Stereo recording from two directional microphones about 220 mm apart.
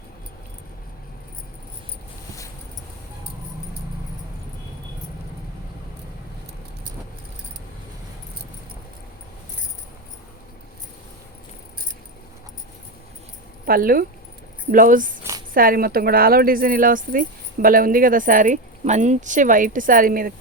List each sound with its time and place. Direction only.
13.7 s speech: 40° right (ahead or behind)
15.2 s a sound: 15° right (ahead or behind)
15.5 s speech: 40° right (ahead or behind)